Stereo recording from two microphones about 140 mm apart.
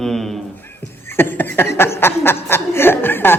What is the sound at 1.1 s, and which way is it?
Speech, 15° left (ahead or behind).